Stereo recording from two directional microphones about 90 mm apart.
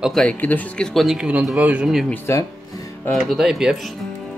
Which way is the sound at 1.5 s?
15° right (ahead or behind).